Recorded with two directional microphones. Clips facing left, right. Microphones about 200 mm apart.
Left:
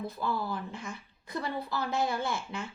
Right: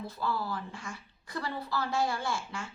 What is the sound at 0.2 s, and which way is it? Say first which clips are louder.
Speech: right 1 dB; 20° left (ahead or behind).